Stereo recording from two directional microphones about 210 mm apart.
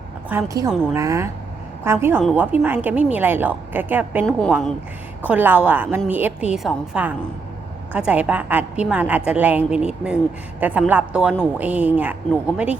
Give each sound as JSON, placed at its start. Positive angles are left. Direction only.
{"t": 0.3, "sound": "a woman's voice", "side_deg": -15}
{"t": 4.3, "sound": "a woman's voice", "side_deg": 5}
{"t": 5.2, "sound": "a woman's voice", "side_deg": -10}